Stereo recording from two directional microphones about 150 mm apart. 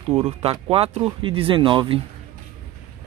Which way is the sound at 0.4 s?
40° right (ahead or behind).